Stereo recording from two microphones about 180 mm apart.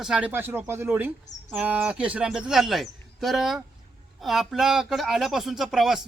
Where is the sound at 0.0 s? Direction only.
5° right (ahead or behind).